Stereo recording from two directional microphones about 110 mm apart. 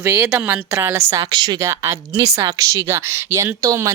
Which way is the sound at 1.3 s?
40° right (ahead or behind).